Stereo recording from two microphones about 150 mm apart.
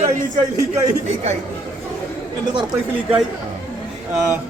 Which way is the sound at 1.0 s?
50° right (ahead or behind).